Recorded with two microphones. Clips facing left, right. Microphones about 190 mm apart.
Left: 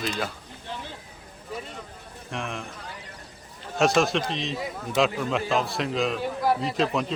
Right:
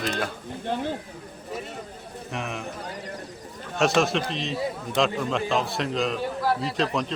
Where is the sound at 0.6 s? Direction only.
55° right (ahead or behind).